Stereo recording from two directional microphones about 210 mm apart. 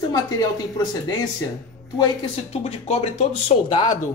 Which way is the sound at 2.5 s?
30° left (ahead or behind).